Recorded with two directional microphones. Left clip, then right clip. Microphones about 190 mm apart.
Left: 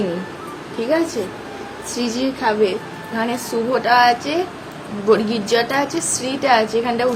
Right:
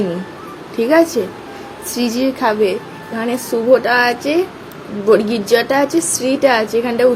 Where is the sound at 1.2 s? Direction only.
35° right (ahead or behind).